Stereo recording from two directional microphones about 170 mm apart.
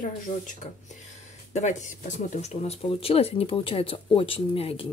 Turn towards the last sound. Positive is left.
turn(degrees=35)  # may be behind; listen again after turning